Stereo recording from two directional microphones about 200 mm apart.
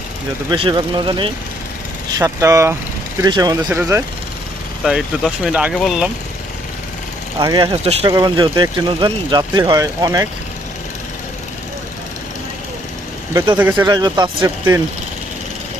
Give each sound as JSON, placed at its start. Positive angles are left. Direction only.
{"t": 0.5, "sound": "speech", "side_deg": -25}
{"t": 4.8, "sound": "speech", "side_deg": 0}
{"t": 7.3, "sound": "speech", "side_deg": -20}
{"t": 13.3, "sound": "speech", "side_deg": -25}
{"t": 13.6, "sound": "speech", "side_deg": -10}
{"t": 13.9, "sound": "speech", "side_deg": -20}